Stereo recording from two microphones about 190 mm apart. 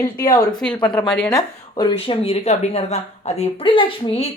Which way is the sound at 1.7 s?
25° left (ahead or behind).